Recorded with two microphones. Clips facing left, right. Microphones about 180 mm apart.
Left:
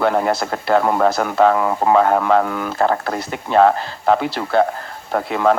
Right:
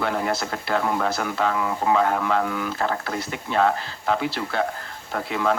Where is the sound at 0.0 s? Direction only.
50° left (ahead or behind).